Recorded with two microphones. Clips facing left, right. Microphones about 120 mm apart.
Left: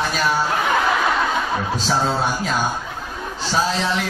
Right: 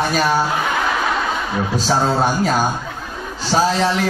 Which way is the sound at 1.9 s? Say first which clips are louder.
Right 3 dB; 45° right (ahead or behind).